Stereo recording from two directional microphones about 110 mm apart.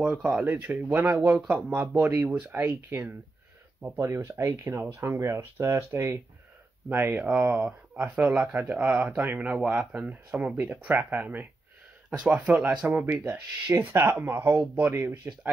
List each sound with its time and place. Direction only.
0.0 s speech: 5° right (ahead or behind)
12.1 s speech: 5° right (ahead or behind); by 15.1 s 20° right (ahead or behind)